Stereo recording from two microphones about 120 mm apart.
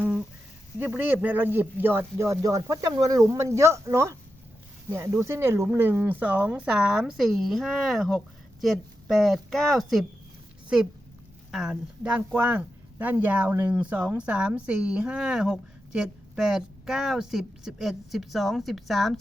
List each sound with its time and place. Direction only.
0.0 s a sound: 10° right (ahead or behind)
0.8 s speech: 15° right (ahead or behind); by 10.1 s centre (ahead or behind)
11.5 s speech: 5° right (ahead or behind)